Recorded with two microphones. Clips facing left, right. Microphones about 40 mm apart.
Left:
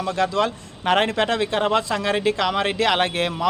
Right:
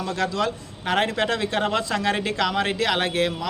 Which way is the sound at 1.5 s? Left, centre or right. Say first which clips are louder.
Left 4 dB; centre.